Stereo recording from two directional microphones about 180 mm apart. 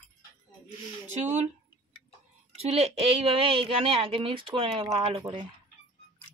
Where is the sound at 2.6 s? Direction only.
35° right (ahead or behind).